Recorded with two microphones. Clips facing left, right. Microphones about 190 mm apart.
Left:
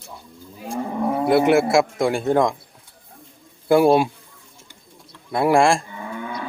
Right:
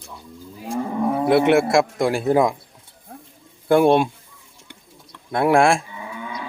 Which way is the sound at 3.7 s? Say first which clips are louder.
Even; 5° left (ahead or behind).